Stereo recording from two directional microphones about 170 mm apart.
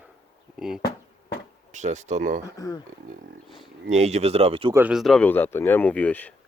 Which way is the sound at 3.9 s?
40° right (ahead or behind).